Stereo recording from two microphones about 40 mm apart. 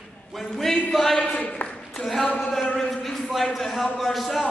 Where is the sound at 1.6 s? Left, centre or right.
Left.